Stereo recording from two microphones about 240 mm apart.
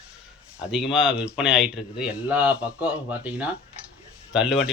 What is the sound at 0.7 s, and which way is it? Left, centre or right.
Speech, centre.